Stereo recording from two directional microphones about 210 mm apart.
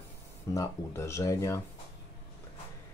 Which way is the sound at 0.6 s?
15° left (ahead or behind).